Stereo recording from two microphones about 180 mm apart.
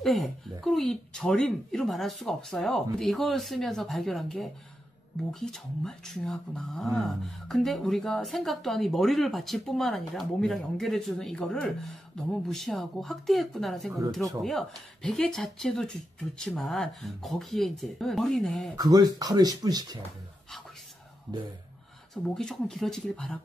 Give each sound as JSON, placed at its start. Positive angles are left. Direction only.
{"t": 0.0, "sound": "speech", "side_deg": 0}
{"t": 18.8, "sound": "speech", "side_deg": -20}
{"t": 22.1, "sound": "speech", "side_deg": 5}